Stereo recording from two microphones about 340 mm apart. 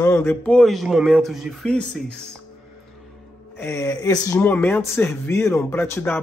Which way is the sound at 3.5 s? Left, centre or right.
Centre.